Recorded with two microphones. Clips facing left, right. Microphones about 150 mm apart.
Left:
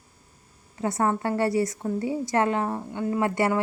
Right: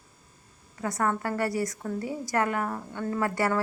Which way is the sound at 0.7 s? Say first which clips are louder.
Left 3 dB; 25° left (ahead or behind).